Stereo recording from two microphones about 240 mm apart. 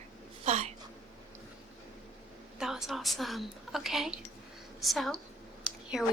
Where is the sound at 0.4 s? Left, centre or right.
Right.